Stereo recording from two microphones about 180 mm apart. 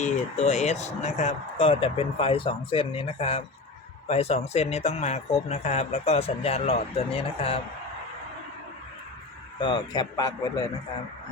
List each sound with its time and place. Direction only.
0.0 s a man's voice: 40° left (ahead or behind)
9.6 s speech: 25° left (ahead or behind)